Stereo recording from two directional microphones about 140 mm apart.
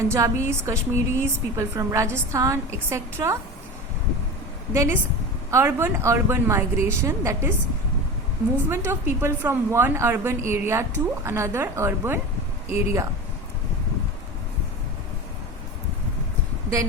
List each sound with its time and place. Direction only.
0.1 s a woman's voice: 20° right (ahead or behind)
4.7 s a woman's voice: 20° right (ahead or behind)
8.7 s a woman's voice: 15° right (ahead or behind)